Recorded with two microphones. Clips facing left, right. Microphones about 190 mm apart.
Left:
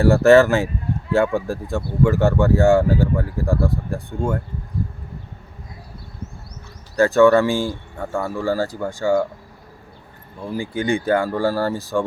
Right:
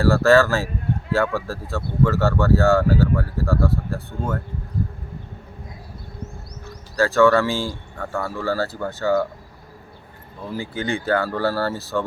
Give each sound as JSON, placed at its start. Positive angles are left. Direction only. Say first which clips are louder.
{"t": 0.0, "sound": "speech", "louder": "left 3 dB", "side_deg": 20}
{"t": 6.9, "sound": "speech", "louder": "left 3 dB", "side_deg": 20}
{"t": 7.5, "sound": "speech", "louder": "left 4 dB", "side_deg": 55}
{"t": 7.9, "sound": "speech", "louder": "left 2 dB", "side_deg": 15}
{"t": 10.6, "sound": "speech", "louder": "left 5 dB", "side_deg": 15}